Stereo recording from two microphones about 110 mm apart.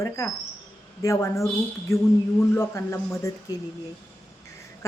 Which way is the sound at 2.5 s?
20° left (ahead or behind).